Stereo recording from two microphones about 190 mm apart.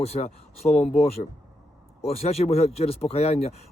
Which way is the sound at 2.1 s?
35° left (ahead or behind).